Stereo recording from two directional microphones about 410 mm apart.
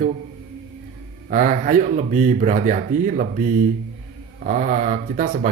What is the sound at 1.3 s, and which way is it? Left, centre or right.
Speech, centre.